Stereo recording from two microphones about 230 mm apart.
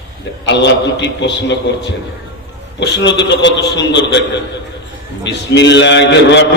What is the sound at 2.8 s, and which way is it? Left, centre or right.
A man's voice, left.